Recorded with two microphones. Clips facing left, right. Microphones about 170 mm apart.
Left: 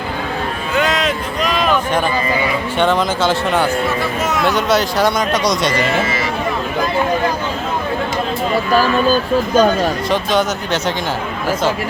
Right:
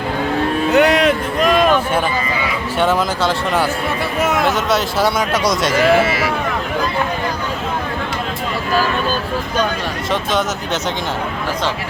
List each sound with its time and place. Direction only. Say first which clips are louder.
0.7 s a sound: right 5 dB; 65° right (ahead or behind)
2.7 s speech: even; 5° right (ahead or behind)
4.2 s speech: right 2 dB; 60° right (ahead or behind)
4.4 s speech: left 2 dB; centre (ahead or behind)
9.6 s speech: left 7 dB; 45° left (ahead or behind)
10.1 s speech: right 2 dB; centre (ahead or behind)